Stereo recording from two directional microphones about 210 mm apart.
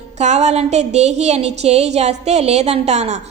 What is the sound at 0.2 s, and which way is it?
A woman's voice, 30° right (ahead or behind).